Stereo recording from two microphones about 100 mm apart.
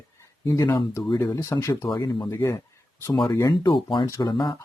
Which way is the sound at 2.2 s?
25° left (ahead or behind).